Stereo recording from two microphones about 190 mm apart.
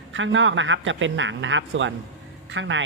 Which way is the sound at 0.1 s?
80° right.